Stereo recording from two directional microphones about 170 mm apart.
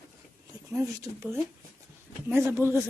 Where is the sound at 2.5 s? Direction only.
15° right (ahead or behind).